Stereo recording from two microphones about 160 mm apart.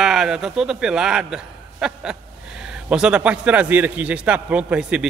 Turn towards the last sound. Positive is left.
turn(degrees=-5)  # may be behind; listen again after turning